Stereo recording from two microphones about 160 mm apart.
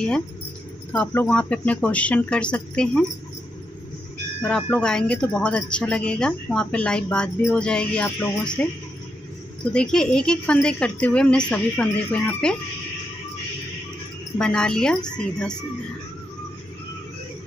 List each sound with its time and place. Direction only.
0.9 s speech: 10° left (ahead or behind)
4.4 s speech: 5° left (ahead or behind)
9.7 s speech: 5° left (ahead or behind)
14.4 s speech: 5° left (ahead or behind)